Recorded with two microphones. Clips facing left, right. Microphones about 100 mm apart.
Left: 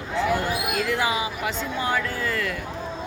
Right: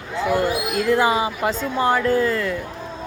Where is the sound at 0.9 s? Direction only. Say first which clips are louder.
Right 10 dB; 35° right (ahead or behind).